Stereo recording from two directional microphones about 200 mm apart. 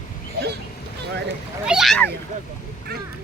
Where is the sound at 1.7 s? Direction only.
Centre (ahead or behind).